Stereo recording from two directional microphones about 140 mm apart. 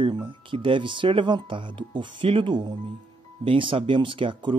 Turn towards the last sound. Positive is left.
turn(degrees=-35)  # may be behind; listen again after turning